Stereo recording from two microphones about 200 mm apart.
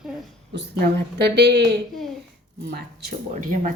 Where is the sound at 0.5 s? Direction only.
55° right (ahead or behind).